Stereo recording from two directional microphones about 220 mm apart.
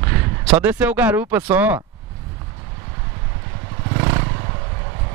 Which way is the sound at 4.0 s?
15° right (ahead or behind).